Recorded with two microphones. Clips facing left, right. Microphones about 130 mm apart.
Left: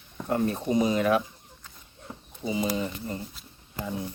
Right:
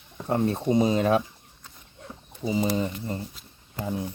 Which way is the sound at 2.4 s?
30° right (ahead or behind).